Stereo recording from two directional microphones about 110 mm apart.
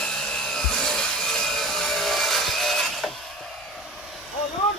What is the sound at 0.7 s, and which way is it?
Wood, 5° left (ahead or behind).